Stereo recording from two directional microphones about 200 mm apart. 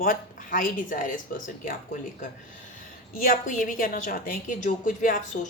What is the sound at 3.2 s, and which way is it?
A woman's voice, 40° left (ahead or behind).